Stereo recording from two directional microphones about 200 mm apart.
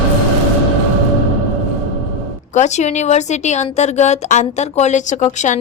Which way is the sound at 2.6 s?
35° left (ahead or behind).